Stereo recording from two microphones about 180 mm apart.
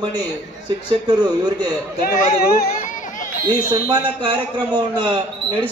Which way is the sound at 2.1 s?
50° left (ahead or behind).